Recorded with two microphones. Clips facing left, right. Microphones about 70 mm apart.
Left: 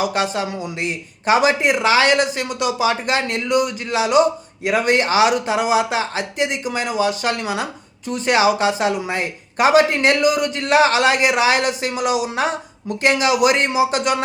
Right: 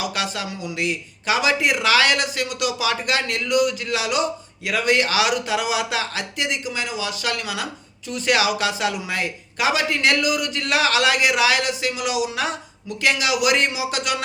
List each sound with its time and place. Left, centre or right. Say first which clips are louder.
0.0 s a man's voice: left 6 dB; left